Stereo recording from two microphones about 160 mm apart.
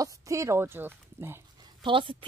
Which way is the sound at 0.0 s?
20° right (ahead or behind).